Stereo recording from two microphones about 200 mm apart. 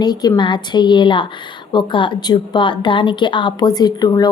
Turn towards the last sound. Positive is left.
turn(degrees=20)  # may be behind; listen again after turning